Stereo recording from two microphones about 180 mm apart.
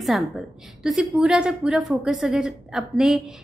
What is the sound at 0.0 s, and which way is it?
A woman's voice, centre (ahead or behind).